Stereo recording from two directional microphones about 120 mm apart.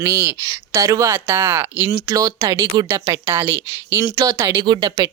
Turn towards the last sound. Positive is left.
turn(degrees=-35)  # may be behind; listen again after turning